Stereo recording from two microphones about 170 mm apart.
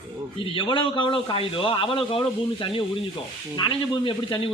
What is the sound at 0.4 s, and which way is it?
A man's voice, 30° left (ahead or behind).